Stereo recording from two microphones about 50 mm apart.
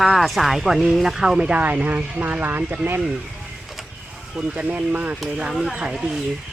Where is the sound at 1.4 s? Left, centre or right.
Right.